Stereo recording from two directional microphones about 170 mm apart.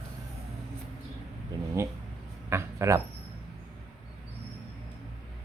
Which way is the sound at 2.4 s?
15° right (ahead or behind).